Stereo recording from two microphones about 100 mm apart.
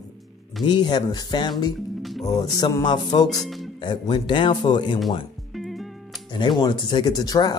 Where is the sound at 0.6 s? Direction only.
45° left (ahead or behind).